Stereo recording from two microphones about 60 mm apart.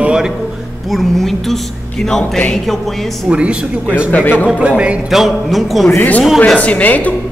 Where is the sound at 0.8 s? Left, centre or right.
Centre.